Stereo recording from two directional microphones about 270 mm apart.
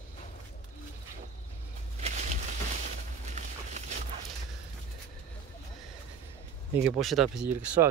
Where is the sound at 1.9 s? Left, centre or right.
Right.